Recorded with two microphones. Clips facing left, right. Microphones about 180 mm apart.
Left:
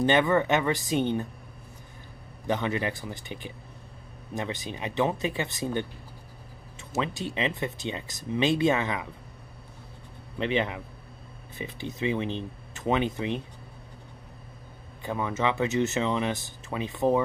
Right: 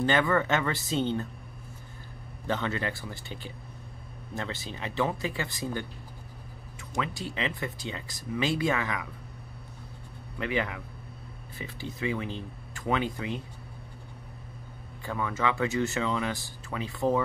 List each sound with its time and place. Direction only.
0.0 s speech: 20° left (ahead or behind)
2.4 s speech: 15° left (ahead or behind)
7.0 s speech: 20° left (ahead or behind)
10.3 s speech: 20° left (ahead or behind)
15.0 s speech: 20° left (ahead or behind)